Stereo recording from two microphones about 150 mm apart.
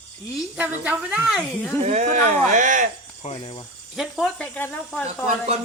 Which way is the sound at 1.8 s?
50° right (ahead or behind).